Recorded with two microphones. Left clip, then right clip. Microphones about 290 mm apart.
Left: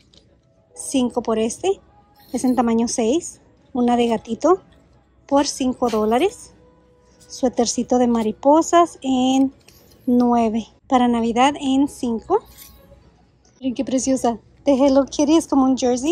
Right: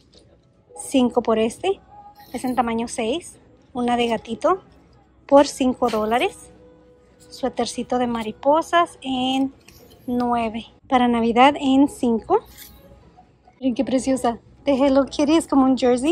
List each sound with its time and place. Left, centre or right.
0.7 s a woman's voice: centre
13.6 s a woman's voice: centre